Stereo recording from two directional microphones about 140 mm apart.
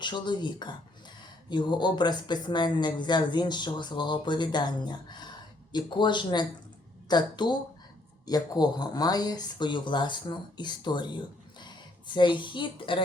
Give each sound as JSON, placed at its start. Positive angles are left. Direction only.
{"t": 0.0, "sound": "speech", "side_deg": 35}